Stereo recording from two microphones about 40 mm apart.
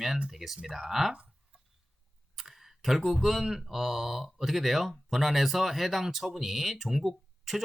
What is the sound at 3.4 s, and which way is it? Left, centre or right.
Speech, centre.